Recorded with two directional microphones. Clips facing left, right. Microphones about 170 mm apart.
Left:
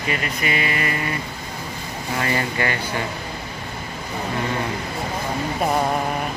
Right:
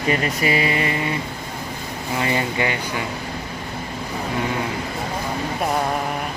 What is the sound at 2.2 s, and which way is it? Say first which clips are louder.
Speech: right 1 dB; 15° right (ahead or behind).